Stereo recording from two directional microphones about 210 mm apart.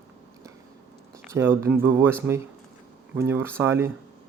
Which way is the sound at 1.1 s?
10° right (ahead or behind).